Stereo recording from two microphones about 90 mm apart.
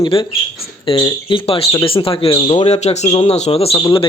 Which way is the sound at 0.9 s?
80° left.